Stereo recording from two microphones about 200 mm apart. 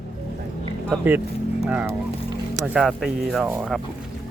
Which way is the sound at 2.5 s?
5° right (ahead or behind).